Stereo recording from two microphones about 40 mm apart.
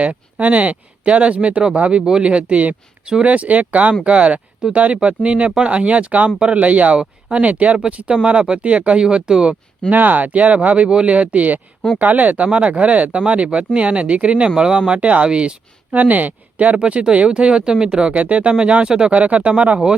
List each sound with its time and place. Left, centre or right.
0.0 s speech: right
6.9 s speech: right
9.9 s speech: right
16.0 s speech: right
16.7 s speech: right
18.1 s speech: right
19.1 s speech: right